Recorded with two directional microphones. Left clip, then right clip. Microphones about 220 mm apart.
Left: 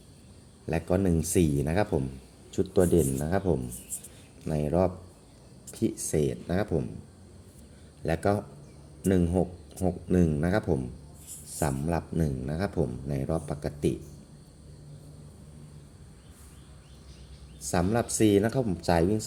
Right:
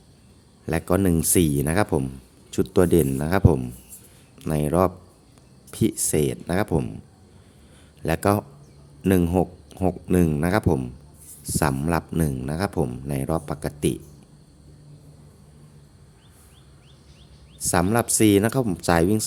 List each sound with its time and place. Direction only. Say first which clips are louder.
0.6 s speech: right 5 dB; 30° right (ahead or behind)
8.0 s speech: right 5 dB; 25° right (ahead or behind)
17.6 s speech: right 6 dB; 30° right (ahead or behind)